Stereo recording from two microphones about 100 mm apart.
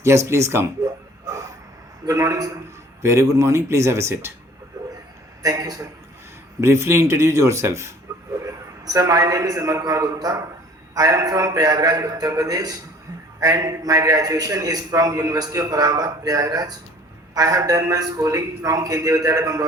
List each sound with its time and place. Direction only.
0.3 s speech: 25° right (ahead or behind)
1.2 s a sound: 35° right (ahead or behind)
2.0 s a man's voice: 35° right (ahead or behind)
5.4 s a man's voice: 40° right (ahead or behind)
6.6 s a man's voice: 25° right (ahead or behind)